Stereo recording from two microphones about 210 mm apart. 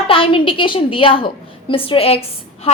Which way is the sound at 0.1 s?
25° left (ahead or behind).